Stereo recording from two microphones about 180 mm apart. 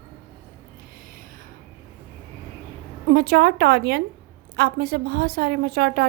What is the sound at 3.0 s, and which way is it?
A woman's voice, 60° right (ahead or behind).